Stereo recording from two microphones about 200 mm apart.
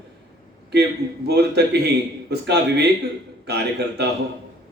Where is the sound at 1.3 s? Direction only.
55° right (ahead or behind).